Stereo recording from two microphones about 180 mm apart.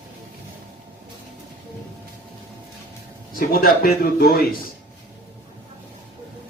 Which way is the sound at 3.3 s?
55° left (ahead or behind).